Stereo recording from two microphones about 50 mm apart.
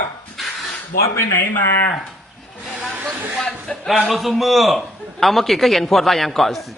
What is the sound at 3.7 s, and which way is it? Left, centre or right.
Speech, centre.